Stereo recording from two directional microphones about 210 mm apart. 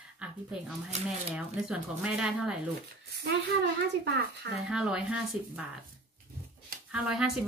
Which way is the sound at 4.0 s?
50° right (ahead or behind).